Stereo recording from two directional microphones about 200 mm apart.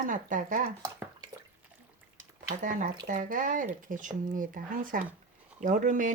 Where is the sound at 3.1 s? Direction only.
40° right (ahead or behind).